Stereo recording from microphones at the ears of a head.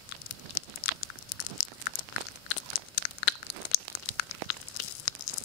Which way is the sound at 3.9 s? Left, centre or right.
Left.